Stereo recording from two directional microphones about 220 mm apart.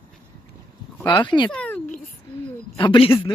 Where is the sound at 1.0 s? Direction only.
20° left (ahead or behind).